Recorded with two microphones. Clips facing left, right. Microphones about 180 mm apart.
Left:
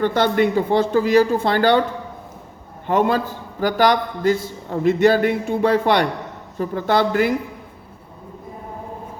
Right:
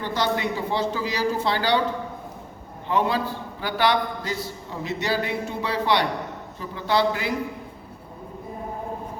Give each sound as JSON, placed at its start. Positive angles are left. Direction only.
{"t": 0.0, "sound": "a man's voice", "side_deg": 55}
{"t": 2.8, "sound": "a man's voice", "side_deg": 50}